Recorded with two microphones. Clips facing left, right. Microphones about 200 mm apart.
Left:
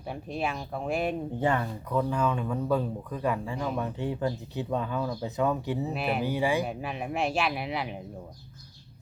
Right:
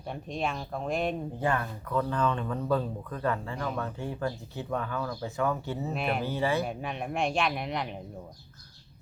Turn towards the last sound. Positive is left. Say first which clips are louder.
# left 1 dB
turn(degrees=5)  # may be behind; listen again after turning